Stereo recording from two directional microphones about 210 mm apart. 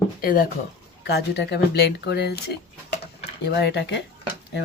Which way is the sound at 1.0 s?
50° left (ahead or behind).